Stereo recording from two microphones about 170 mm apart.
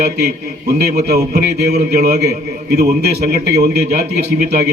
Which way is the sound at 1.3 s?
70° right (ahead or behind).